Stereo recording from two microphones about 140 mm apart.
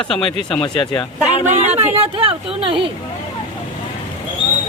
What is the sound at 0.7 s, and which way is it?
Speech, 5° left (ahead or behind).